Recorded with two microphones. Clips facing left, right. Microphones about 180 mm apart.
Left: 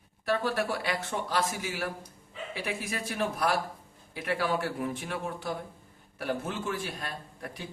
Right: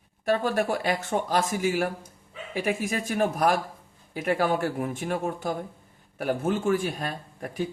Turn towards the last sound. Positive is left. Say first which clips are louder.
# right 6 dB
turn(degrees=-50)  # may be behind; listen again after turning